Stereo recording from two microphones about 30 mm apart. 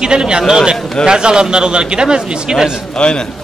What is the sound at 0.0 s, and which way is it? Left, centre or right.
Speech, right.